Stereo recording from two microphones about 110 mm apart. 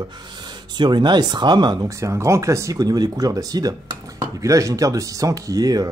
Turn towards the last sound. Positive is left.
turn(degrees=-35)  # may be behind; listen again after turning